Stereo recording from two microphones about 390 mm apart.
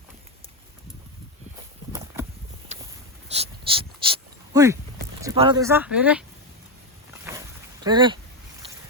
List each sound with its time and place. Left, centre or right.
2.7 s a sound: centre
5.2 s speech: centre
7.1 s boat: centre
7.9 s speech: centre